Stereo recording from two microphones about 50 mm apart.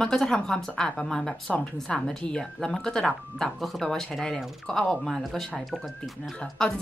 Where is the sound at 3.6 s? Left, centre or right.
Centre.